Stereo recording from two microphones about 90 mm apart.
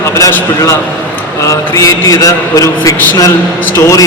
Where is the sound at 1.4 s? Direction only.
35° left (ahead or behind).